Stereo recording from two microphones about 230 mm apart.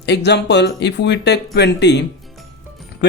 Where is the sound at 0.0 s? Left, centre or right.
Left.